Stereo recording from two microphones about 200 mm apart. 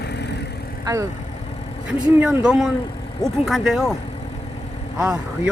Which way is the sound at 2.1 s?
5° right (ahead or behind).